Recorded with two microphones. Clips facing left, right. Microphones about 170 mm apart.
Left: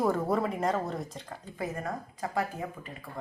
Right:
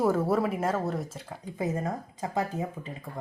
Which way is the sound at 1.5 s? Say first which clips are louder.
Right 4 dB; 20° right (ahead or behind).